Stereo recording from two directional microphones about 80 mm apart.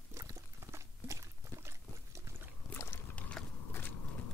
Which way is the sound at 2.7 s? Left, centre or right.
Left.